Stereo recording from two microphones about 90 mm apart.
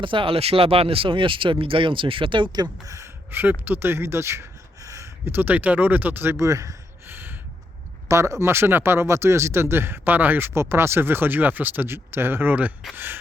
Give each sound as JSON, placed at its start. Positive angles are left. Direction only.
{"t": 0.0, "sound": "speech", "side_deg": -70}
{"t": 3.3, "sound": "speech", "side_deg": -25}